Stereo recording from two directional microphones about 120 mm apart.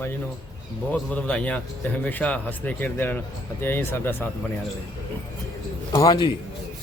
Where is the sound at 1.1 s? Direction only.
10° left (ahead or behind).